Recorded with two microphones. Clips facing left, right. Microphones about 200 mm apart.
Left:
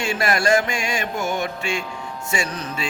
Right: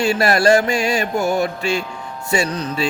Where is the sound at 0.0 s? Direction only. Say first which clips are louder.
Right 6 dB; 35° right (ahead or behind).